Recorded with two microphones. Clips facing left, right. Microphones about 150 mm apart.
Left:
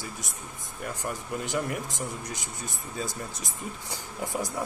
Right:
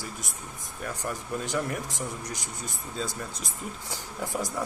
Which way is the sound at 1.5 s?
15° left (ahead or behind).